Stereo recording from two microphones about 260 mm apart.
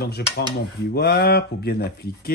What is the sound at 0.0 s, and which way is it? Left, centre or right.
Speech, left.